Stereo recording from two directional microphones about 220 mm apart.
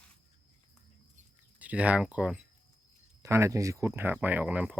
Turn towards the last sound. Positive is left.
turn(degrees=-5)  # may be behind; listen again after turning